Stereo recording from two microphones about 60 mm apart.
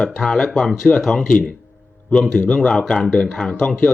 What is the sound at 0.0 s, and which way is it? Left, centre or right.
Speech, centre.